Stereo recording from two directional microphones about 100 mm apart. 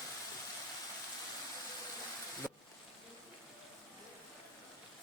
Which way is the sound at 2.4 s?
5° right (ahead or behind).